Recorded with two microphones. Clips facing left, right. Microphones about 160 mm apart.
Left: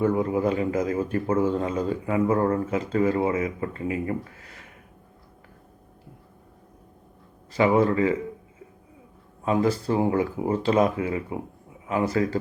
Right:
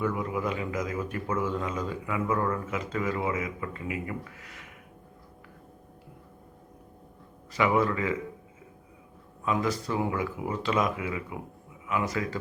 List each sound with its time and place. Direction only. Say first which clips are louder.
0.0 s a man's voice: left 7 dB; 30° left (ahead or behind)
7.5 s a man's voice: left 5 dB; 30° left (ahead or behind)
9.4 s a man's voice: left 5 dB; 30° left (ahead or behind)